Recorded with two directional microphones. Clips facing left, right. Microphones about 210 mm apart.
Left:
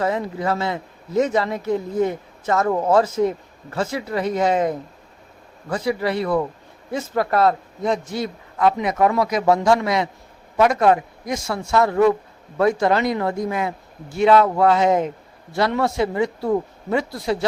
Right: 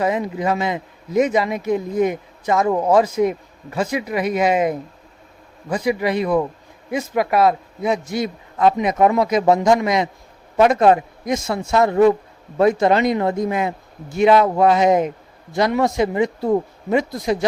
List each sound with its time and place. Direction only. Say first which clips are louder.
0.0 s speech: right 2 dB; 15° right (ahead or behind)